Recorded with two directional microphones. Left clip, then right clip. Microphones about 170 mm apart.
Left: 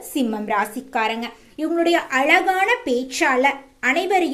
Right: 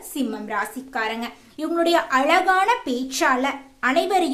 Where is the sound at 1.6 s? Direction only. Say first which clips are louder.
Left 1 dB; centre (ahead or behind).